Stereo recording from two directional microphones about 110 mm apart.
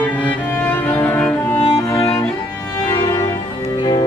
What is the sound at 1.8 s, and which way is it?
Music, 30° left (ahead or behind).